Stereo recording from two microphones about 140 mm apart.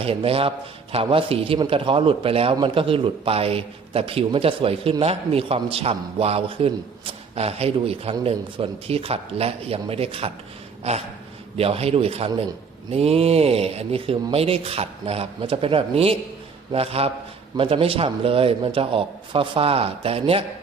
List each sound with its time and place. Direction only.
0.0 s a man's voice: 45° right (ahead or behind)